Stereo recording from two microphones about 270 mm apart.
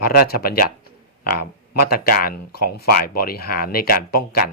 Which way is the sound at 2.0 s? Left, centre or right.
Left.